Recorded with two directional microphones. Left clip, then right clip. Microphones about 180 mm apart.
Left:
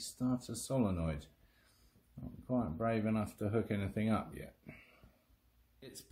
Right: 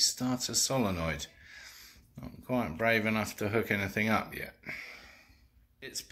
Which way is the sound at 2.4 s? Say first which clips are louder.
Right 6 dB; 10° right (ahead or behind).